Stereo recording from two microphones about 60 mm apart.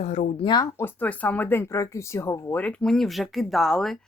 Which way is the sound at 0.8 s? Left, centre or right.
Left.